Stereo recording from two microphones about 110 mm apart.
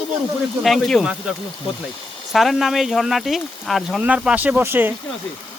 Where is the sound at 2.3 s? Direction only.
Centre (ahead or behind).